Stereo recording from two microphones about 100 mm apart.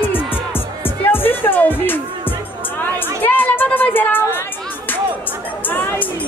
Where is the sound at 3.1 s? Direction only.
20° left (ahead or behind).